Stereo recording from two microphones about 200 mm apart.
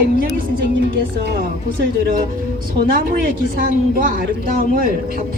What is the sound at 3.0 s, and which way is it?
A woman's voice, 45° right (ahead or behind).